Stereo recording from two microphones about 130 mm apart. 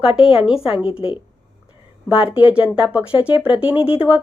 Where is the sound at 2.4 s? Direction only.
10° right (ahead or behind).